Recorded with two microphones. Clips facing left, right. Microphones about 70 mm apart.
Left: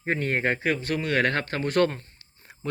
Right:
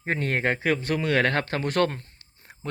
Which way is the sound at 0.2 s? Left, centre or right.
Right.